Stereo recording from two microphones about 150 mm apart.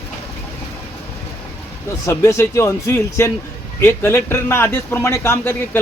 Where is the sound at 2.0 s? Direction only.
20° left (ahead or behind).